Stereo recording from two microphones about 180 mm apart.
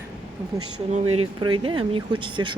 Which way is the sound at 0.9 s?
35° right (ahead or behind).